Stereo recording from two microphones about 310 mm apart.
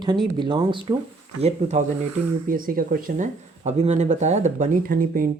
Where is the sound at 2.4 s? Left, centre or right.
Right.